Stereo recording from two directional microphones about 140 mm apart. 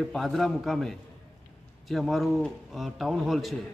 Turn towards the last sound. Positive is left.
turn(degrees=0)  # may be behind; listen again after turning